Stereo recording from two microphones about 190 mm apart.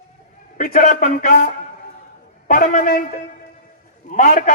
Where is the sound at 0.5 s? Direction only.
45° left (ahead or behind).